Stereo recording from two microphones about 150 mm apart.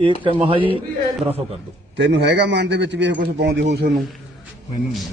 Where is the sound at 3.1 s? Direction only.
85° right.